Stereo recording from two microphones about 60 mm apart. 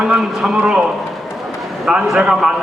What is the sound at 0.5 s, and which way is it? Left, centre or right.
Speech, centre.